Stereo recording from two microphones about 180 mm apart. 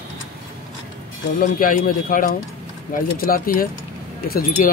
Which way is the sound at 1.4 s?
50° left (ahead or behind).